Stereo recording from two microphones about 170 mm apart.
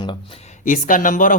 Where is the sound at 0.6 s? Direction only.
50° left (ahead or behind).